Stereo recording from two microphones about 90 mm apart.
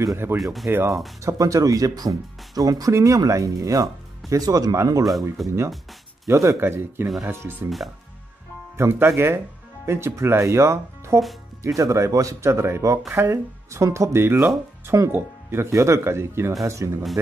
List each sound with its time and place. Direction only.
0.0 s speech: 30° right (ahead or behind)
0.4 s speech: centre (ahead or behind)
0.7 s speech: 25° right (ahead or behind)
1.2 s speech: 40° right (ahead or behind)
5.4 s speech: centre (ahead or behind)
6.2 s speech: 35° right (ahead or behind)
8.7 s speech: 25° right (ahead or behind)